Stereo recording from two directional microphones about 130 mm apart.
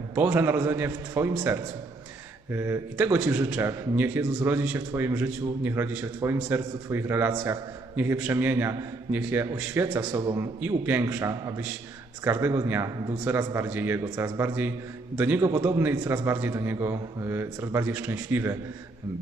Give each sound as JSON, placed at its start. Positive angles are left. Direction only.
{"t": 0.1, "sound": "a man's voice", "side_deg": -15}
{"t": 2.5, "sound": "a man's voice", "side_deg": -20}
{"t": 4.2, "sound": "a man's voice", "side_deg": -25}
{"t": 4.4, "sound": "a man's voice", "side_deg": -15}
{"t": 10.6, "sound": "a man's voice", "side_deg": -15}